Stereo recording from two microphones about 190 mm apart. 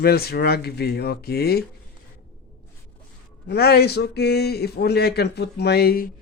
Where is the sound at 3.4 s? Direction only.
55° left (ahead or behind).